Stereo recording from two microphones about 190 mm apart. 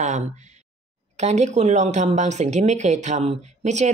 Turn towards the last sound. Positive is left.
turn(degrees=-35)  # may be behind; listen again after turning